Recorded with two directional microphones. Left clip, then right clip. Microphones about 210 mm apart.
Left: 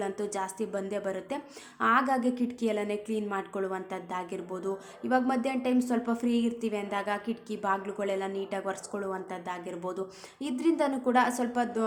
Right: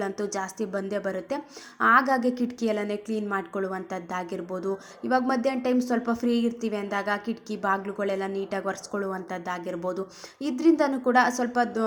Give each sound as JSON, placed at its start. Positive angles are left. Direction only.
{"t": 0.0, "sound": "a woman's voice", "side_deg": -20}